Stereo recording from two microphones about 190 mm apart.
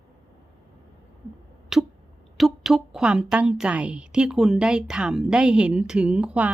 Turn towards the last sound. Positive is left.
turn(degrees=-5)  # may be behind; listen again after turning